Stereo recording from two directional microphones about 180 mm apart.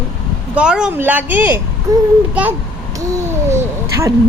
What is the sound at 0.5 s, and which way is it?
A child's voice, 5° right (ahead or behind).